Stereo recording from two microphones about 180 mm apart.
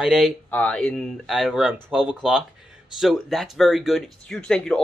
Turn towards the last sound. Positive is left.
turn(degrees=5)  # may be behind; listen again after turning